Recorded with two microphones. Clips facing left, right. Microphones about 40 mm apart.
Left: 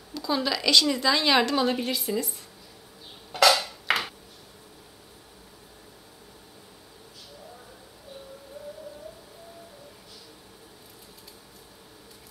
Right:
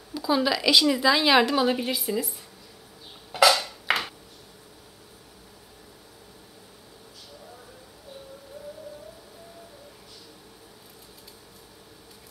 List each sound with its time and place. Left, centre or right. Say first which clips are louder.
0.1 s a woman's voice: right 3 dB; centre
3.3 s dishes: right 1 dB; centre